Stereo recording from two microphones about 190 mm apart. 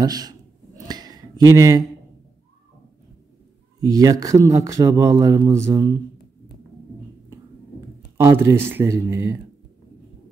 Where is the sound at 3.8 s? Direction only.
20° right (ahead or behind).